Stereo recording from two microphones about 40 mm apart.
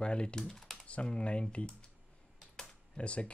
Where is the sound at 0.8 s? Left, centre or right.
Left.